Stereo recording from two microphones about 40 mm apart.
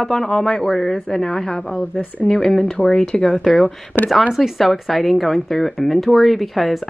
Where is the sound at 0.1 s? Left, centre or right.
Centre.